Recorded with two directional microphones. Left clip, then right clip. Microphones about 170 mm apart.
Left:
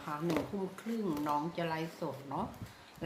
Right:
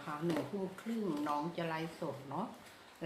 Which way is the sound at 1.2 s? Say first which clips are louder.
Left 4 dB; 20° left (ahead or behind).